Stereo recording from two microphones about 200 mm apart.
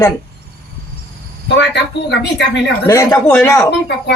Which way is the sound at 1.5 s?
60° left (ahead or behind).